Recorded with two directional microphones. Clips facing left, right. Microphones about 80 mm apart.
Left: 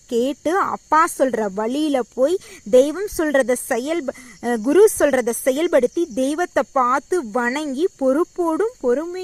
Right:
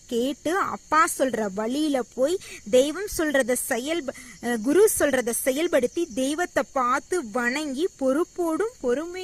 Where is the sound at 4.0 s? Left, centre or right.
Left.